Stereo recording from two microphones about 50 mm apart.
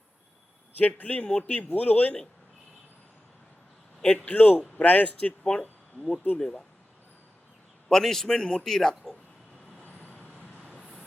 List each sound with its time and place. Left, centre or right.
0.8 s speech: left
4.0 s a man's voice: left
5.4 s a man's voice: centre
6.1 s a man's voice: left
7.9 s a man's voice: centre
9.8 s vehicle: left